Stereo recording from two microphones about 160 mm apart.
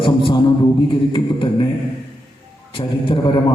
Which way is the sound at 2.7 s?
30° left (ahead or behind).